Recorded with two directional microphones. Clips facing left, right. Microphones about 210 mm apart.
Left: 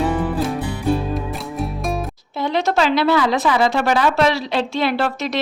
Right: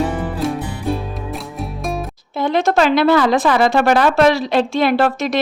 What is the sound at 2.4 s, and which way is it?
Speech, 50° right (ahead or behind).